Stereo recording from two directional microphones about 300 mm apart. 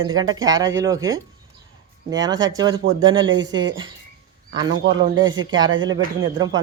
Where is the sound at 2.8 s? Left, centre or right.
Right.